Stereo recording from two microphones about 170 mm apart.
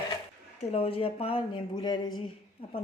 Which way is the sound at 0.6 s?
35° left (ahead or behind).